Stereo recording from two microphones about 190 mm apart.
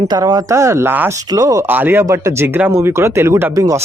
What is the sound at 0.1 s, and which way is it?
Speech, 20° right (ahead or behind).